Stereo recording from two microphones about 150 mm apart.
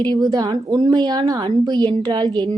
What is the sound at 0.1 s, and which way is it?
A woman's voice, 25° right (ahead or behind).